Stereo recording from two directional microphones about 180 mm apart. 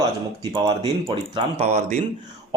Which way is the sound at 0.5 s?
25° right (ahead or behind).